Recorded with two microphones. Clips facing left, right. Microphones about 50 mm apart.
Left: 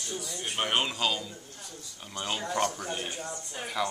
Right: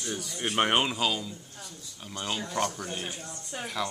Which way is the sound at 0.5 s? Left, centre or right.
Right.